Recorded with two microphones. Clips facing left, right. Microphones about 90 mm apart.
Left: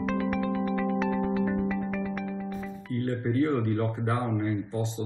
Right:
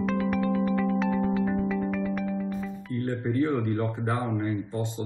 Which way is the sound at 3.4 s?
Centre (ahead or behind).